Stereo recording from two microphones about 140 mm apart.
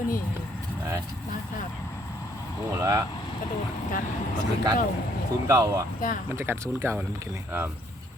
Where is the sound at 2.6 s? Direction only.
20° right (ahead or behind).